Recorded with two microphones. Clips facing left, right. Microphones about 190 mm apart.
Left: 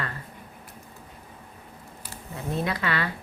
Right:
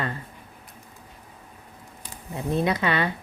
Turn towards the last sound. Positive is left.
turn(degrees=-20)  # may be behind; listen again after turning